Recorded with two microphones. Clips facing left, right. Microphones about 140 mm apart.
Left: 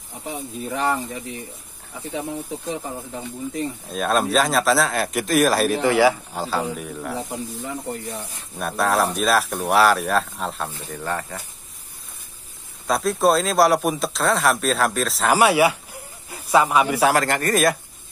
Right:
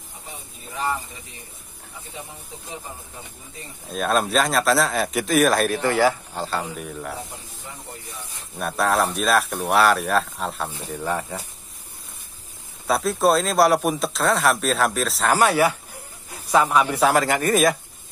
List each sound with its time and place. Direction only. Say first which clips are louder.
0.7 s speech: left 4 dB; 80° left
3.9 s speech: even; centre (ahead or behind)
5.8 s speech: left 2 dB; 15° left (ahead or behind)
8.5 s speech: left 1 dB; centre (ahead or behind)
12.8 s speech: left 1 dB; centre (ahead or behind)
15.3 s speech: left 2 dB; 10° left (ahead or behind)
17.2 s speech: right 1 dB; 5° right (ahead or behind)